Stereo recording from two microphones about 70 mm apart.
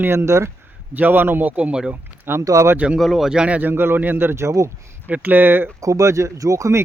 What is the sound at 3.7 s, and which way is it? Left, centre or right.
Speech, right.